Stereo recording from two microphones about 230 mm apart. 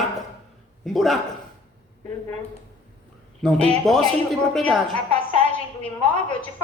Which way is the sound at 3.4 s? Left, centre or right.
Centre.